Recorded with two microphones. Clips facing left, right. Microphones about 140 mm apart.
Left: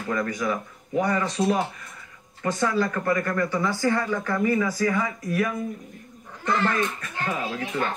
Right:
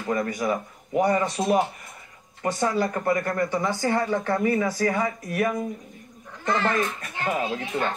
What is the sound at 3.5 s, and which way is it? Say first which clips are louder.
Speech: left 1 dB; 45° right (ahead or behind).